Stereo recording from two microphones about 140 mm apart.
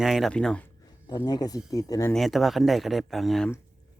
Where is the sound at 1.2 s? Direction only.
25° left (ahead or behind).